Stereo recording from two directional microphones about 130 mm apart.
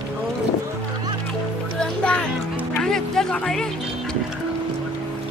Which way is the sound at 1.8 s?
10° left (ahead or behind).